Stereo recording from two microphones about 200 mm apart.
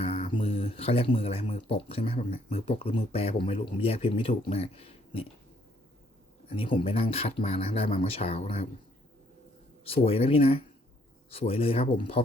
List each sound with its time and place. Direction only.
0.0 s speech: 30° left (ahead or behind)
6.6 s speech: 25° left (ahead or behind)
9.8 s speech: 30° left (ahead or behind)